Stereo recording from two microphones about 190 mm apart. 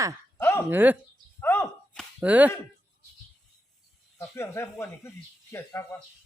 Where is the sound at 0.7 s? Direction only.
10° right (ahead or behind).